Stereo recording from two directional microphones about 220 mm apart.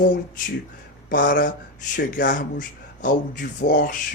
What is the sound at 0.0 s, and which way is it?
Speech, 35° left (ahead or behind).